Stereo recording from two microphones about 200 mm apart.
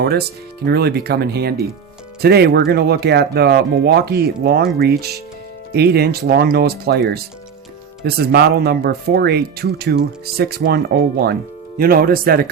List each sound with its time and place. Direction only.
0.0 s speech: 55° right (ahead or behind)